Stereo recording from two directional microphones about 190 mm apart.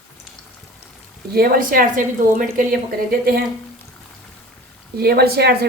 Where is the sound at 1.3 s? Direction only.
55° right (ahead or behind).